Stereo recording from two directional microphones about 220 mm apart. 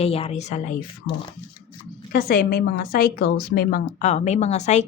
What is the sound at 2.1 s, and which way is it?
A woman's voice, 40° left (ahead or behind).